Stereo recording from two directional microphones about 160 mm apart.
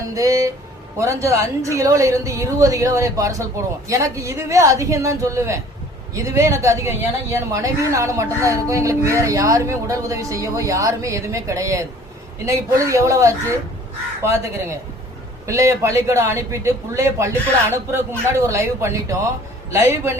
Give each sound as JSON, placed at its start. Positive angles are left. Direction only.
{"t": 0.1, "sound": "speech", "side_deg": -20}